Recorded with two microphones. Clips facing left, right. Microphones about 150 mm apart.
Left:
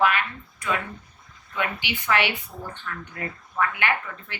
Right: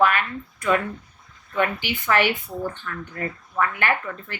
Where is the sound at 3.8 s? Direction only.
45° right (ahead or behind).